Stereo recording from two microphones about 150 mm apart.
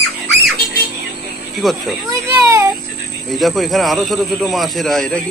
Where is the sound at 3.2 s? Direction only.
Centre (ahead or behind).